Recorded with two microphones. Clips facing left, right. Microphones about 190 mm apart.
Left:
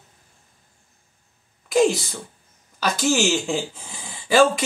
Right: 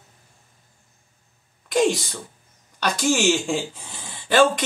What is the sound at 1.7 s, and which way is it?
Speech, 5° left (ahead or behind).